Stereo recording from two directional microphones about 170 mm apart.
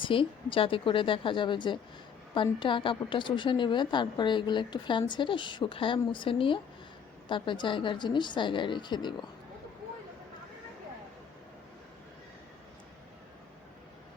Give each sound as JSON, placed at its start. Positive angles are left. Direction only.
{"t": 0.0, "sound": "a woman's voice", "side_deg": 30}